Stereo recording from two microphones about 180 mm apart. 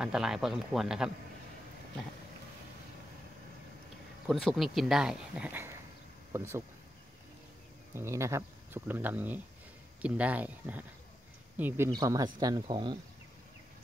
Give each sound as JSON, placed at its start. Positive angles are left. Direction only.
{"t": 0.0, "sound": "speech", "side_deg": -5}
{"t": 4.3, "sound": "speech", "side_deg": 0}
{"t": 7.9, "sound": "speech", "side_deg": -15}